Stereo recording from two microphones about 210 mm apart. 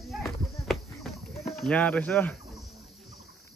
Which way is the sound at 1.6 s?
5° left (ahead or behind).